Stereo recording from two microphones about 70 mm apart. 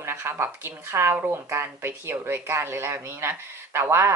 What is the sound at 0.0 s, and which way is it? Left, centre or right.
Speech, right.